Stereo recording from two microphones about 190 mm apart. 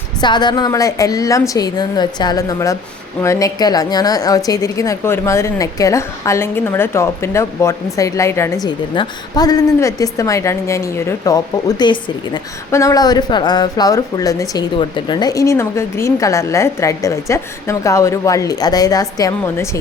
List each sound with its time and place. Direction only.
0.2 s a woman's voice: 25° left (ahead or behind)